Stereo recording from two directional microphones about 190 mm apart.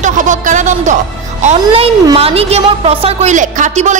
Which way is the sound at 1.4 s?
30° right (ahead or behind).